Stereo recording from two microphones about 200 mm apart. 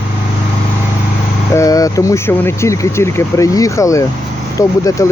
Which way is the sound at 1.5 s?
15° left (ahead or behind).